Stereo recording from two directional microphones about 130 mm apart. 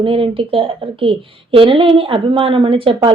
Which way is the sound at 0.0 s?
45° right (ahead or behind).